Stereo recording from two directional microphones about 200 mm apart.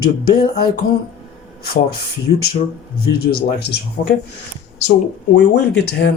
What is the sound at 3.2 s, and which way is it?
Speech, 50° left (ahead or behind).